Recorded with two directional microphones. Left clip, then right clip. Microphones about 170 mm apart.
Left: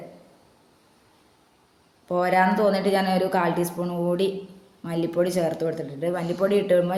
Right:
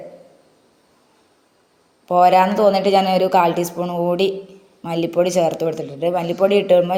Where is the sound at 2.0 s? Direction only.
15° right (ahead or behind).